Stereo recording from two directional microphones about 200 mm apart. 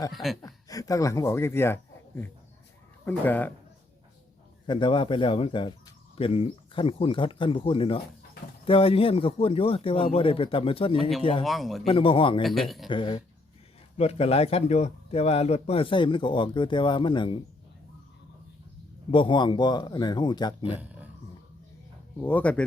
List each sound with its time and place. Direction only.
0.1 s speech: centre (ahead or behind)
0.4 s speech: 15° left (ahead or behind)
4.6 s a man's voice: 25° left (ahead or behind)
11.4 s speech: centre (ahead or behind)
11.9 s a man's voice: 25° left (ahead or behind)
12.4 s speech: centre (ahead or behind)
12.9 s a man's voice: 25° left (ahead or behind)
19.1 s a man's voice: 25° left (ahead or behind)
22.2 s speech: 10° left (ahead or behind)